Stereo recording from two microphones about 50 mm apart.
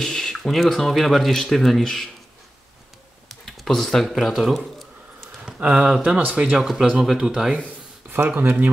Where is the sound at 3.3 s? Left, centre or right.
Centre.